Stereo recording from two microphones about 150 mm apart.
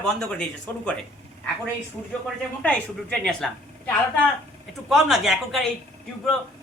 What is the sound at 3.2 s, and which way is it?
A woman's voice, 5° left (ahead or behind).